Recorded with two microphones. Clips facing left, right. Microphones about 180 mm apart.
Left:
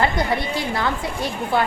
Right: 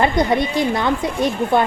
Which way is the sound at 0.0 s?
20° right (ahead or behind).